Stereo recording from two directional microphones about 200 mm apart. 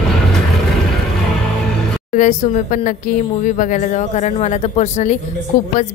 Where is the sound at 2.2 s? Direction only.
35° left (ahead or behind).